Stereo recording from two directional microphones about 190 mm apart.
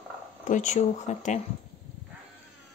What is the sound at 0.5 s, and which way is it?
Speech, 40° left (ahead or behind).